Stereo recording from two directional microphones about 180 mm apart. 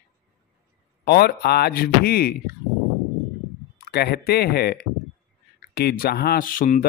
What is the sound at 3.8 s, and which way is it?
Speech, 65° left (ahead or behind).